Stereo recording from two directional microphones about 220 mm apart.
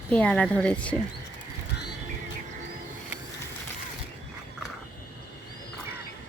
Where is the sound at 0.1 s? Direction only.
5° left (ahead or behind).